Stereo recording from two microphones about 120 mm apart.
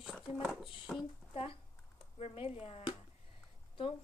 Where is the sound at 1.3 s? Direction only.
50° left (ahead or behind).